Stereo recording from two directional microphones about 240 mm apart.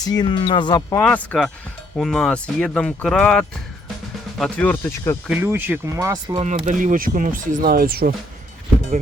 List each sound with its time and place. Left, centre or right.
0.0 s speech: centre
1.0 s speech: centre
5.3 s speech: centre
6.4 s speech: right